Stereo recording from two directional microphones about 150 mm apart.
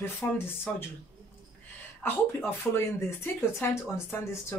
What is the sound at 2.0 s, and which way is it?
Speech, 15° left (ahead or behind).